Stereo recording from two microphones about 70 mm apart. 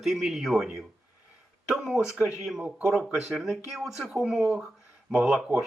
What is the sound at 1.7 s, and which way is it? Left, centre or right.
Speech, centre.